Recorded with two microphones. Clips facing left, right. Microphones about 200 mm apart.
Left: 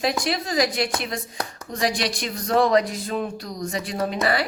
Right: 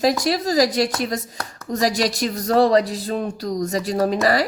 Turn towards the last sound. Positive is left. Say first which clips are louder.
# right 5 dB
turn(degrees=-40)  # may be behind; listen again after turning